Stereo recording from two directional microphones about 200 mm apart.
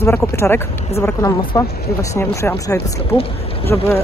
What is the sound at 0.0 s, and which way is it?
Speech, 10° left (ahead or behind).